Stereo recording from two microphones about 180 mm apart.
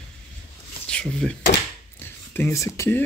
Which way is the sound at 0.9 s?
5° left (ahead or behind).